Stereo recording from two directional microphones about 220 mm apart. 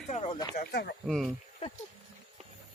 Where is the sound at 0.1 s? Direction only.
30° left (ahead or behind).